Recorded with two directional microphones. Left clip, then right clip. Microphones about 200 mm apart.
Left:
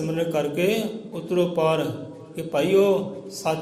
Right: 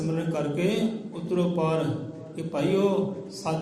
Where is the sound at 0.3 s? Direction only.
50° left (ahead or behind).